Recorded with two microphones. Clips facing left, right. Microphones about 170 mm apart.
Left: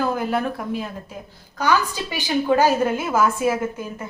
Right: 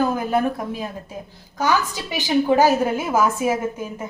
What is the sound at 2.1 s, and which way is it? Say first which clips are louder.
A woman's voice: right 2 dB; 15° right (ahead or behind).